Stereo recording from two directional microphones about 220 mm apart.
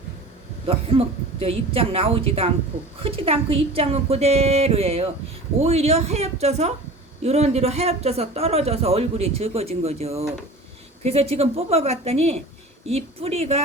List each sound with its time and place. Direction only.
0.7 s speech: 25° right (ahead or behind)